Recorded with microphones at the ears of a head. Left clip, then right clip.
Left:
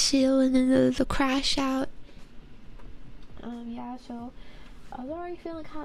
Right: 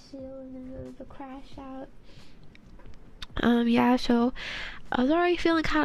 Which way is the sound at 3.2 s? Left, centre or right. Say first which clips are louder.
Right 16 dB; right.